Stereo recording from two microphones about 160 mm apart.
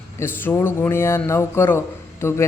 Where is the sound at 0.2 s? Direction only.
15° left (ahead or behind).